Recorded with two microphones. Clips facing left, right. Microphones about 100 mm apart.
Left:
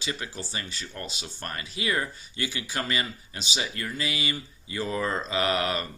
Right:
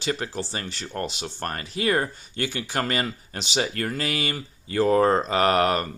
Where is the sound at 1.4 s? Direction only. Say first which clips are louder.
Right 6 dB; 45° right (ahead or behind).